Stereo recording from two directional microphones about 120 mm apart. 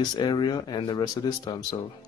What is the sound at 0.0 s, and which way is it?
Speech, 35° left (ahead or behind).